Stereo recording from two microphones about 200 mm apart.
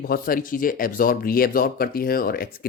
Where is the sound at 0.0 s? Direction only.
45° left (ahead or behind).